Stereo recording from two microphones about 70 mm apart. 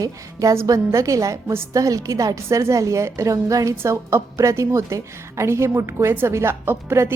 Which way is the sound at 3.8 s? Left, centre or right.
Right.